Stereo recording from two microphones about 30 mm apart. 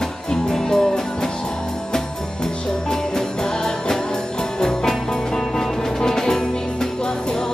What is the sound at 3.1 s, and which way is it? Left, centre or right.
Music, centre.